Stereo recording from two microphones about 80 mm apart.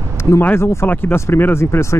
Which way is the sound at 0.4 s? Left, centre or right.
Left.